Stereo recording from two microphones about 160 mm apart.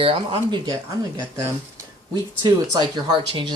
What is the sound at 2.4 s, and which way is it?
Speech, 25° right (ahead or behind).